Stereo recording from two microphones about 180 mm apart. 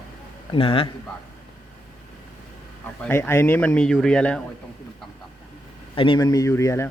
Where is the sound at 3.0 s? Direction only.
15° left (ahead or behind).